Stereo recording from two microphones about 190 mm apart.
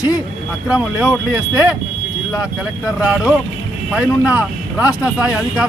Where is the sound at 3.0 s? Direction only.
5° right (ahead or behind).